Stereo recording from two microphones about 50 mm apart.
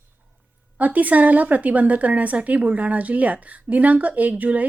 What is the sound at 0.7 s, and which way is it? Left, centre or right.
A woman's voice, right.